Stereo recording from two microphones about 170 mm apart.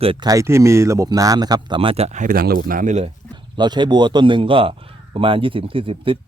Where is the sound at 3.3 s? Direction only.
25° right (ahead or behind).